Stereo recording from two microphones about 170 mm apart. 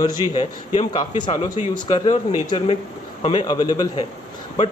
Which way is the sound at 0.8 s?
25° left (ahead or behind).